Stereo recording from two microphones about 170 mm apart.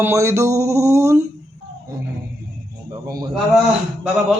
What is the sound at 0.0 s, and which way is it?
A man's voice, 15° right (ahead or behind).